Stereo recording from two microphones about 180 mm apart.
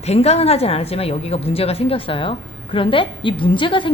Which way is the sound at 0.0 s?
35° left (ahead or behind).